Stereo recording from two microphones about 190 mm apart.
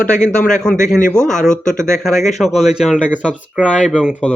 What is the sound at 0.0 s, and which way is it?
Speech, 40° left (ahead or behind).